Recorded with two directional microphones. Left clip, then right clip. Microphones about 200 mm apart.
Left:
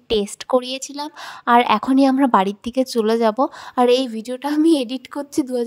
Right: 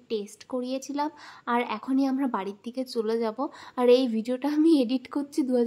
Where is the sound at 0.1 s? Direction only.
45° left (ahead or behind).